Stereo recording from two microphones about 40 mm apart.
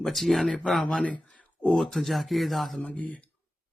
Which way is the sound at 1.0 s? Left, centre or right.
Left.